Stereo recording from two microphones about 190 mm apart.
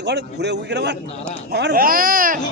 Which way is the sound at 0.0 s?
65° right (ahead or behind).